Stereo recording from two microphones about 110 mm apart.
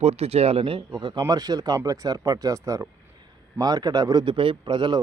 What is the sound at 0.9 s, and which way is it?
Speech, 45° right (ahead or behind).